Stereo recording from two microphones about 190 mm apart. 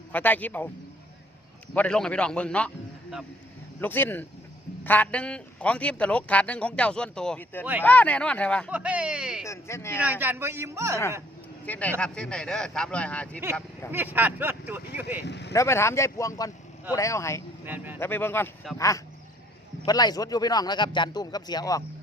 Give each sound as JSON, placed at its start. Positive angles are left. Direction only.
{"t": 0.1, "sound": "a man's voice", "side_deg": 10}
{"t": 1.7, "sound": "a man's voice", "side_deg": 5}
{"t": 7.6, "sound": "speech", "side_deg": -10}
{"t": 7.9, "sound": "a man's voice", "side_deg": 10}
{"t": 8.7, "sound": "speech", "side_deg": -5}
{"t": 9.5, "sound": "a man's voice", "side_deg": 15}
{"t": 10.0, "sound": "speech", "side_deg": -10}
{"t": 11.6, "sound": "speech", "side_deg": 10}
{"t": 13.9, "sound": "speech", "side_deg": -10}
{"t": 15.2, "sound": "speech", "side_deg": 65}
{"t": 15.5, "sound": "a man's voice", "side_deg": 15}
{"t": 17.7, "sound": "speech", "side_deg": -10}
{"t": 18.0, "sound": "a man's voice", "side_deg": 10}